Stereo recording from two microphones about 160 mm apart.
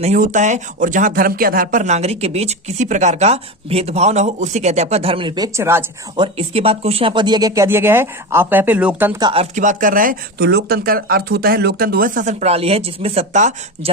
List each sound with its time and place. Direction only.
0.0 s speech: 50° right (ahead or behind); by 5.5 s 30° right (ahead or behind)
5.5 s speech: 15° right (ahead or behind)
6.1 s speech: 35° right (ahead or behind); by 9.1 s 10° right (ahead or behind)
9.3 s speech: 45° right (ahead or behind)